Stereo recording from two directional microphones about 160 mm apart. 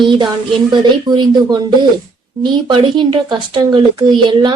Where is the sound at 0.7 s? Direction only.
30° right (ahead or behind).